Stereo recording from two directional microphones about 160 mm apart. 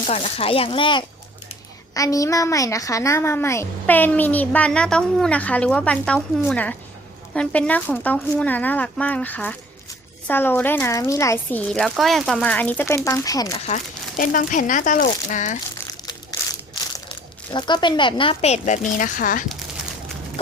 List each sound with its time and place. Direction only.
0.1 s a woman's voice: 35° left (ahead or behind); by 11.6 s 20° left (ahead or behind)
11.7 s speech: centre (ahead or behind); by 13.6 s 20° left (ahead or behind)
14.2 s speech: 55° left (ahead or behind)
17.5 s speech: 30° left (ahead or behind); by 19.5 s 55° left (ahead or behind)